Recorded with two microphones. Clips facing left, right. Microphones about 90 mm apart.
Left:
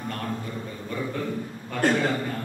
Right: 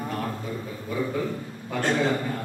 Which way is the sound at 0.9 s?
10° right (ahead or behind).